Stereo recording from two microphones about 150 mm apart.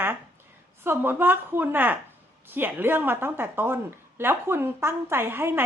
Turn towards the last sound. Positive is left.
turn(degrees=-15)  # may be behind; listen again after turning